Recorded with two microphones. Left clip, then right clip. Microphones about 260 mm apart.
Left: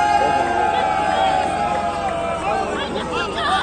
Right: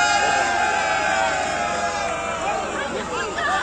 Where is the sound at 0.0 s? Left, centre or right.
Right.